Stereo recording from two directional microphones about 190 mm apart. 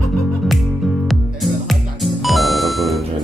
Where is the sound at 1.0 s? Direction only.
Centre (ahead or behind).